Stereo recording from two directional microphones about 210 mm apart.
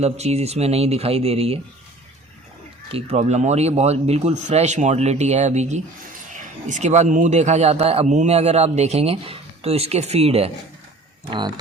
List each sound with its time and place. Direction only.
0.0 s speech: 30° right (ahead or behind)
2.9 s a man's voice: 30° right (ahead or behind)